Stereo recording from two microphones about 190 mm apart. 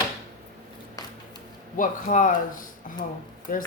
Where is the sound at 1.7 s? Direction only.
45° left (ahead or behind).